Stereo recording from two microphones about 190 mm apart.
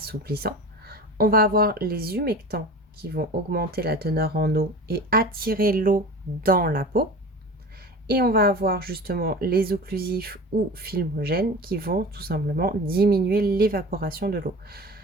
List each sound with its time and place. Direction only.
0.0 s speech: 55° right (ahead or behind)
8.0 s speech: 50° right (ahead or behind)